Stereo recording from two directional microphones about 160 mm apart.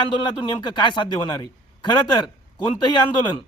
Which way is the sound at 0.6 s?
30° left (ahead or behind).